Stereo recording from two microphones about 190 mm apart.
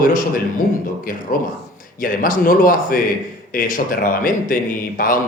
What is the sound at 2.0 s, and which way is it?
A man's voice, 45° left (ahead or behind).